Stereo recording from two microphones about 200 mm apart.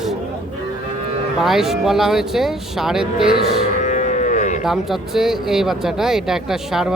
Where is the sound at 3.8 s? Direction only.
40° left (ahead or behind).